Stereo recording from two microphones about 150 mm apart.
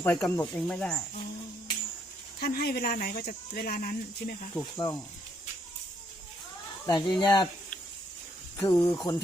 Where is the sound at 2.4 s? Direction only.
90° left; by 4.4 s 70° left (ahead or behind).